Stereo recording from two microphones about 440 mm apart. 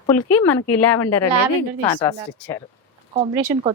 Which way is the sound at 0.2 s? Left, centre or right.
Left.